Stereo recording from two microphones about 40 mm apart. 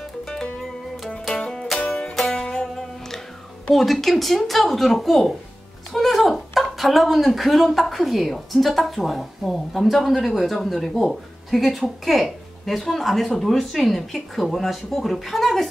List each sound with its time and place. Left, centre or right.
0.2 s music: centre
3.7 s speech: centre